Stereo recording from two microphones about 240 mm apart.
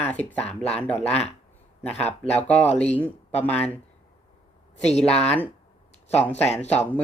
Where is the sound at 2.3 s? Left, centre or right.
Centre.